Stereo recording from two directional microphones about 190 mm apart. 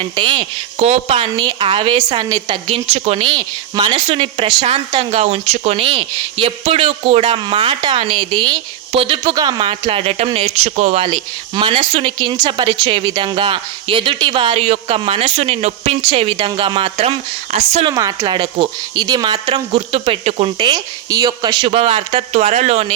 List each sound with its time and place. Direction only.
0.0 s speech: 25° right (ahead or behind)
1.3 s speech: 20° right (ahead or behind)
17.9 s speech: 20° right (ahead or behind)